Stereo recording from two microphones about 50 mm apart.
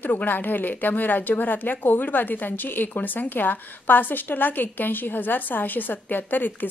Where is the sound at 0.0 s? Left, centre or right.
Left.